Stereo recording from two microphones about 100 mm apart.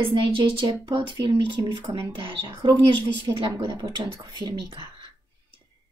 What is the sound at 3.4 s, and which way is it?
Speech, 40° right (ahead or behind).